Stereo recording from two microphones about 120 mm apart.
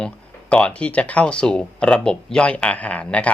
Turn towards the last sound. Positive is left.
turn(degrees=10)  # may be behind; listen again after turning